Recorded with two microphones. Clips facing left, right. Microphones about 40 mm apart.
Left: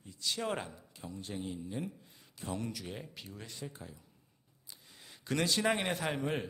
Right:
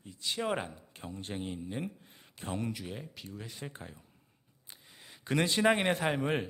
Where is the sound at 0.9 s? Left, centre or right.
Right.